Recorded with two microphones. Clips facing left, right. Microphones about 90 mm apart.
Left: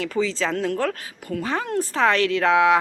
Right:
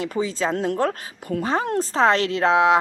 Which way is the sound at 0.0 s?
20° right (ahead or behind).